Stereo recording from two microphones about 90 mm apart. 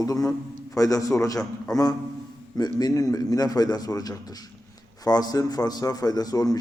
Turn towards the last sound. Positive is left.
turn(degrees=45)  # may be behind; listen again after turning